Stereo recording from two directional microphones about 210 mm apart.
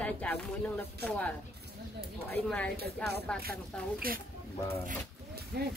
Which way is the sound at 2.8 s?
50° right (ahead or behind).